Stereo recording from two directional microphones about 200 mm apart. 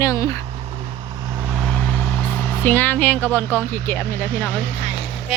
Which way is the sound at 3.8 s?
10° left (ahead or behind).